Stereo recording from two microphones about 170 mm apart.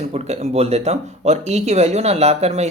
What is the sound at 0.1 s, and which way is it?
Speech, 40° right (ahead or behind).